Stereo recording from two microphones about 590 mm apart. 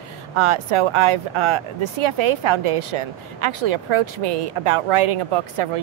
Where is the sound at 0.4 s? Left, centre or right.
Right.